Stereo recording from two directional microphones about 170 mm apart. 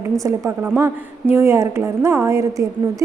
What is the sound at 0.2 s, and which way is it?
A woman's voice, 20° right (ahead or behind).